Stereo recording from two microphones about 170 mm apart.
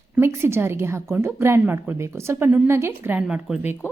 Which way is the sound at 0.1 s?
15° right (ahead or behind).